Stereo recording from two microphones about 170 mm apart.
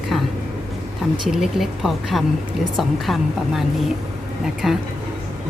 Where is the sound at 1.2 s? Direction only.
Centre (ahead or behind).